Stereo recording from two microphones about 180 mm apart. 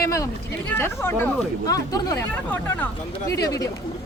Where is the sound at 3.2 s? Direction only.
20° left (ahead or behind).